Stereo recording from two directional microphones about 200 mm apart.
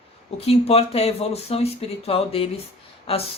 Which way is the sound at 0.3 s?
30° left (ahead or behind).